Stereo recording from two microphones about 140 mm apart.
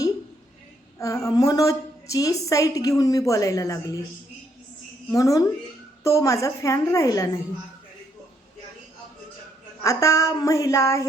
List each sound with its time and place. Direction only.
0.9 s a woman's voice: 20° left (ahead or behind)
5.1 s a woman's voice: 25° left (ahead or behind)
9.8 s a woman's voice: 25° left (ahead or behind)